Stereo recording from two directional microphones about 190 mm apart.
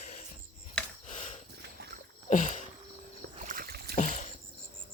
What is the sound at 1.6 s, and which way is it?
Dog, 60° right (ahead or behind).